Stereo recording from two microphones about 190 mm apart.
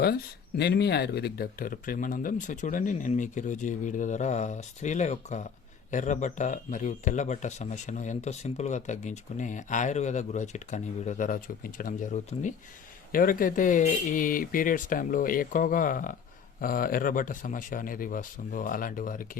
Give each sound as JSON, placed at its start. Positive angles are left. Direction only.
{"t": 0.0, "sound": "speech", "side_deg": 55}